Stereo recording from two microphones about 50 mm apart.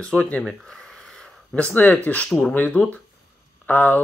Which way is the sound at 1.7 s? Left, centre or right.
Left.